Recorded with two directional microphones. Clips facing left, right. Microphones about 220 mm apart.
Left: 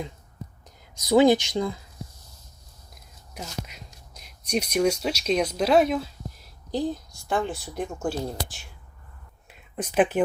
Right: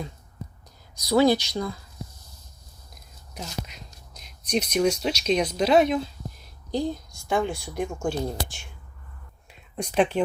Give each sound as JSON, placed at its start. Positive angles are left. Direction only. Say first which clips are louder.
{"t": 1.0, "sound": "speech", "louder": "left 2 dB", "side_deg": 15}
{"t": 3.3, "sound": "speech", "louder": "right 1 dB", "side_deg": 5}
{"t": 9.5, "sound": "a sound", "louder": "even", "side_deg": 5}